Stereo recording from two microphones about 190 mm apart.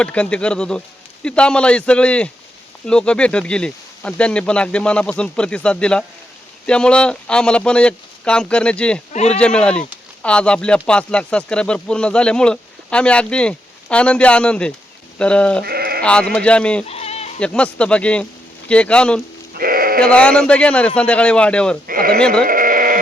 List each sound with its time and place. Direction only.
0.0 s speech: 5° left (ahead or behind)
9.1 s speech: 35° left (ahead or behind)
9.4 s speech: 5° left (ahead or behind)
15.6 s sheep: 55° right (ahead or behind)
16.3 s speech: 5° left (ahead or behind)
16.8 s bleat: 35° left (ahead or behind)
17.4 s speech: 5° left (ahead or behind)
19.5 s sheep: 50° right (ahead or behind)
20.1 s speech: 5° left (ahead or behind)
21.8 s speech: 50° right (ahead or behind)
22.4 s sheep: 45° right (ahead or behind)